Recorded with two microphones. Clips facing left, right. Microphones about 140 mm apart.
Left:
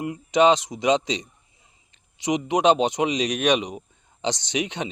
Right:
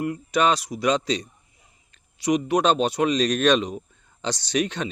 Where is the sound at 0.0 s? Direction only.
20° left (ahead or behind).